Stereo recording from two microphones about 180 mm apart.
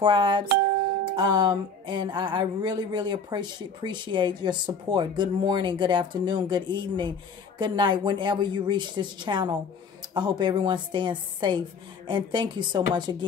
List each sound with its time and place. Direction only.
0.0 s speech: 25° right (ahead or behind)